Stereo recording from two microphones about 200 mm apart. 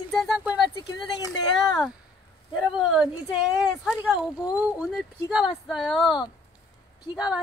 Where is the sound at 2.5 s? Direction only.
Centre (ahead or behind).